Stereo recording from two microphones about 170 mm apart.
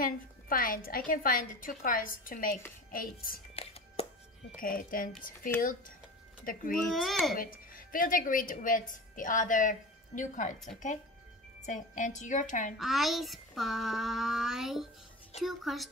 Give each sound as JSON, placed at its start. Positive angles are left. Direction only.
{"t": 0.0, "sound": "a woman's voice", "side_deg": 55}
{"t": 3.5, "sound": "chopping", "side_deg": 35}
{"t": 4.6, "sound": "a woman's voice", "side_deg": 55}
{"t": 6.9, "sound": "child singing", "side_deg": 0}
{"t": 7.3, "sound": "a woman's voice", "side_deg": 55}
{"t": 12.7, "sound": "child singing", "side_deg": 0}